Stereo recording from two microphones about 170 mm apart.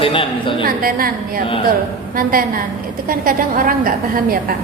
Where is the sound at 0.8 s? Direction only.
60° right (ahead or behind).